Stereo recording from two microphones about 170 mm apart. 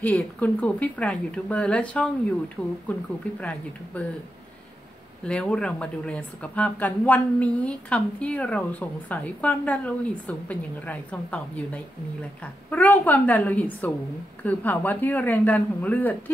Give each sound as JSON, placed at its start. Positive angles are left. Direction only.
{"t": 0.0, "sound": "speech", "side_deg": 10}
{"t": 5.2, "sound": "speech", "side_deg": 5}